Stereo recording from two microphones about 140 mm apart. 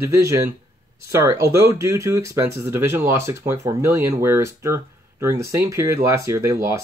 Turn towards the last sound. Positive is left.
turn(degrees=-20)  # may be behind; listen again after turning